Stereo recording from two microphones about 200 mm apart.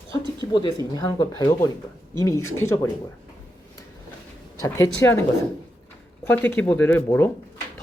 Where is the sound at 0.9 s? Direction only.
20° left (ahead or behind).